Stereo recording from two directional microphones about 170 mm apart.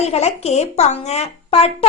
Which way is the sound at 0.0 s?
40° left (ahead or behind).